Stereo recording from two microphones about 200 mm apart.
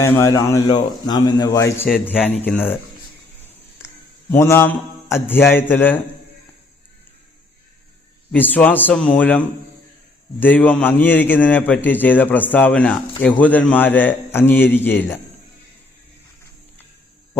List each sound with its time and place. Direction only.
0.0 s a man's voice: 15° left (ahead or behind)
3.8 s a man's voice: 15° left (ahead or behind)
8.3 s a man's voice: 10° left (ahead or behind)